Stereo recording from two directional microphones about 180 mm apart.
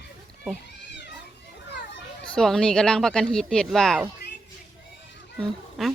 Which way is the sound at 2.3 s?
5° left (ahead or behind).